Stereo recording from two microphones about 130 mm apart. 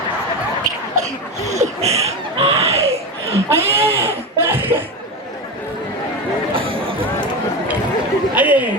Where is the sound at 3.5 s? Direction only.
20° right (ahead or behind).